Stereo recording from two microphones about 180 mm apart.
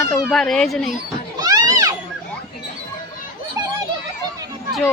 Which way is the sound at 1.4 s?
20° right (ahead or behind).